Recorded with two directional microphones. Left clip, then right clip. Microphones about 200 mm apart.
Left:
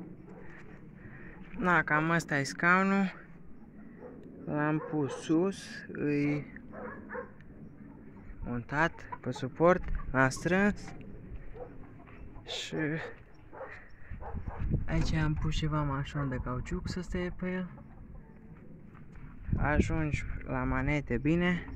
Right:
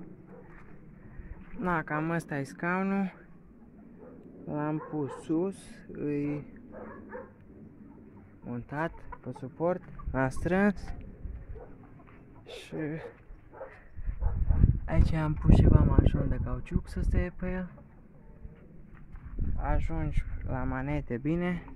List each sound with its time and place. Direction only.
1.6 s speech: 5° right (ahead or behind)
4.5 s speech: centre (ahead or behind)
8.5 s speech: centre (ahead or behind)
9.3 s speech: 15° left (ahead or behind)
10.1 s speech: 10° right (ahead or behind)
12.4 s speech: centre (ahead or behind)
14.9 s speech: 20° right (ahead or behind)
19.5 s speech: 10° left (ahead or behind)